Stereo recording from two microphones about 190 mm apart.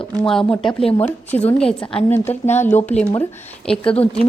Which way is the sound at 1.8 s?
30° left (ahead or behind).